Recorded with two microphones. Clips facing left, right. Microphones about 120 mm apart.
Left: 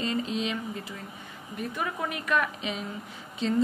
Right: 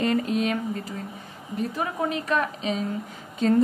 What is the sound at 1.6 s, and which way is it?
A woman's voice, 30° right (ahead or behind).